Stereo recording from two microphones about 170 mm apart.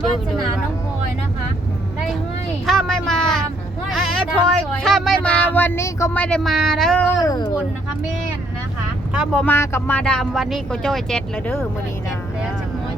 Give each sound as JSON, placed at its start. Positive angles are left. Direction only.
{"t": 2.6, "sound": "a sound", "side_deg": 0}
{"t": 6.2, "sound": "speech", "side_deg": 5}
{"t": 7.2, "sound": "speech", "side_deg": 25}
{"t": 9.1, "sound": "speech", "side_deg": -5}
{"t": 9.4, "sound": "speech", "side_deg": 10}